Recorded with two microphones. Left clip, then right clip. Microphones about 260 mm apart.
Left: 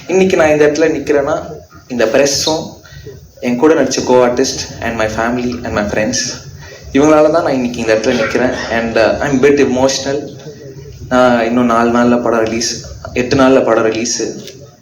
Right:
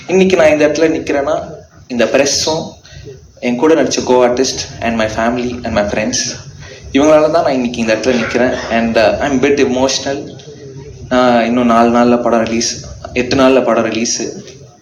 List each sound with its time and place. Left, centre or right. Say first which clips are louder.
0.1 s a man's voice: right 1 dB; right